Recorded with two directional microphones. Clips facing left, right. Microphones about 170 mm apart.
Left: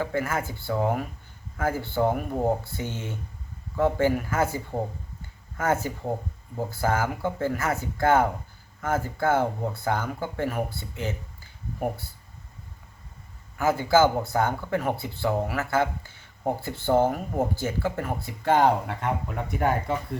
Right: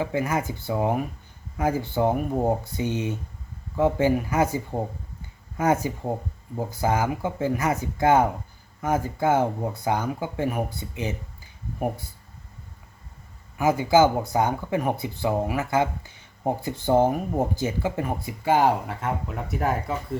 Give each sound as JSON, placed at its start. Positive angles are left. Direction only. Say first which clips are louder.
{"t": 0.0, "sound": "speech", "louder": "right 2 dB", "side_deg": -15}
{"t": 13.6, "sound": "speech", "louder": "right 2 dB", "side_deg": -15}